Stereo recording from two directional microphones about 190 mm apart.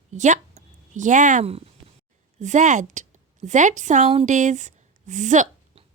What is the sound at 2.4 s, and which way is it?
A woman's voice, 40° right (ahead or behind).